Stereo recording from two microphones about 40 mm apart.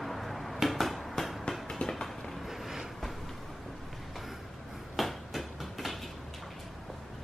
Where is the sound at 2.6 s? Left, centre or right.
Centre.